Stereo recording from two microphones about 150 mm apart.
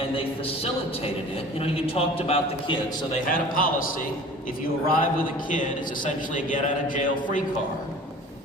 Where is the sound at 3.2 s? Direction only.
70° left (ahead or behind).